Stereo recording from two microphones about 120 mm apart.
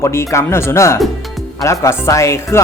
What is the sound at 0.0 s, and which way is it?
Speech, 25° left (ahead or behind).